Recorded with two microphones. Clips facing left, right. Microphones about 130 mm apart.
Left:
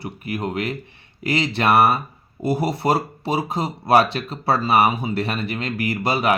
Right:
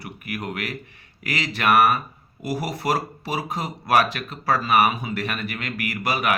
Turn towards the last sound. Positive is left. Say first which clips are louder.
# left 4 dB
turn(degrees=30)  # may be behind; listen again after turning